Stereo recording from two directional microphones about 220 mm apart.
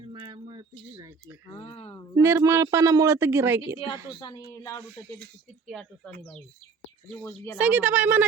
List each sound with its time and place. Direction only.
0.1 s a sound: 20° right (ahead or behind)
1.5 s speech: 25° left (ahead or behind)
2.2 s speech: 10° right (ahead or behind)
4.2 s speech: 20° left (ahead or behind)
5.6 s speech: centre (ahead or behind)
7.1 s speech: 10° left (ahead or behind)
7.6 s speech: 10° right (ahead or behind)